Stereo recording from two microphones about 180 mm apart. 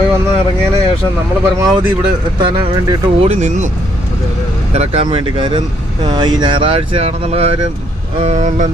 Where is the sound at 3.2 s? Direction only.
40° right (ahead or behind).